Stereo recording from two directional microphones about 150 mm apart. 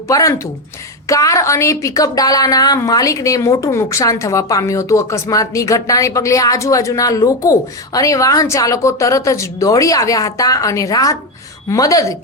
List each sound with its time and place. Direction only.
0.1 s a woman's voice: 20° left (ahead or behind)